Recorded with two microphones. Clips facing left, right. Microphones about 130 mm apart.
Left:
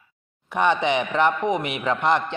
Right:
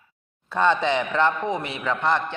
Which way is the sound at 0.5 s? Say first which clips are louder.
Even; 15° left (ahead or behind).